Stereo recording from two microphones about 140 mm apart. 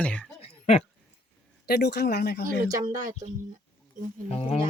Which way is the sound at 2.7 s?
25° right (ahead or behind).